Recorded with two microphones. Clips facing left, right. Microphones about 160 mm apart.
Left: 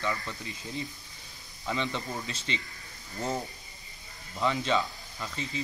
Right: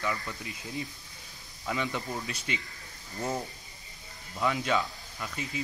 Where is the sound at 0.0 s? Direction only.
5° right (ahead or behind).